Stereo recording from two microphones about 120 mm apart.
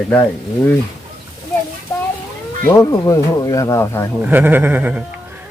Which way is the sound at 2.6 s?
30° left (ahead or behind).